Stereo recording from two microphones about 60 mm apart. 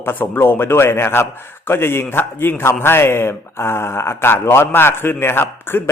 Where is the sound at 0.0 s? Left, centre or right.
Left.